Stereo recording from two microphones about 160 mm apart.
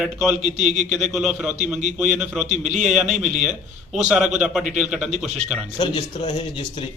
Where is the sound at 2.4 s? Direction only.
45° right (ahead or behind).